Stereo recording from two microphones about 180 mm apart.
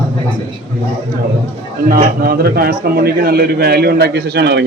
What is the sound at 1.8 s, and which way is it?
A man's voice, 55° right (ahead or behind).